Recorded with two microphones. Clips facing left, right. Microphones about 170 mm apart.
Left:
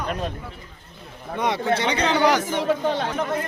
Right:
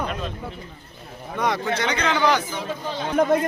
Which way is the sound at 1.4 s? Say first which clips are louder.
Left 1 dB; 25° left (ahead or behind).